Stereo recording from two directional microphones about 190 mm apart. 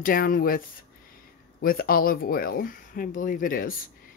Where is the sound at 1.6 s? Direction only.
50° left (ahead or behind).